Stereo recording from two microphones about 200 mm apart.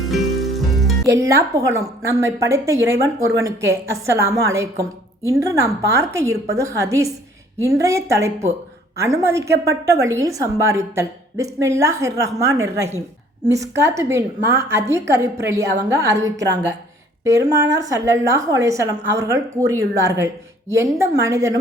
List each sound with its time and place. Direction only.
0.1 s music: centre (ahead or behind)
1.0 s a woman's voice: 15° right (ahead or behind)